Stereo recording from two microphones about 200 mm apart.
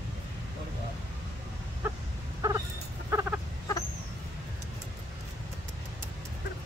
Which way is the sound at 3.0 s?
15° right (ahead or behind).